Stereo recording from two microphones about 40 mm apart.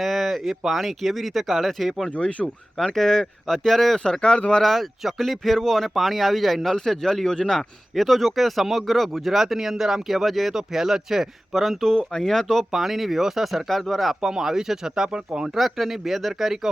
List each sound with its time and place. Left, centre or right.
0.0 s a sound: centre
0.6 s speech: centre
2.0 s speech: left
2.7 s speech: centre
7.9 s speech: centre
12.2 s speech: centre
12.7 s speech: centre
14.2 s speech: centre
15.4 s speech: centre